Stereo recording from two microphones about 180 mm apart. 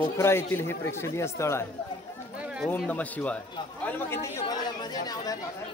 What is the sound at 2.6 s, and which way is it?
Speech, 10° left (ahead or behind).